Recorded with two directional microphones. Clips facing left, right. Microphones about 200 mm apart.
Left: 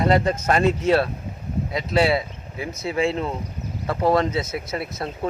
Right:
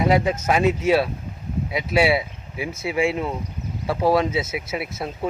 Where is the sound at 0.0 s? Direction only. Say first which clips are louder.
Even; 5° right (ahead or behind).